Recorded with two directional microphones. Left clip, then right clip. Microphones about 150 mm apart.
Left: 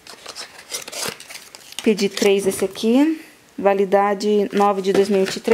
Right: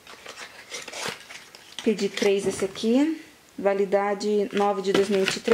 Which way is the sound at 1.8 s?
25° left (ahead or behind).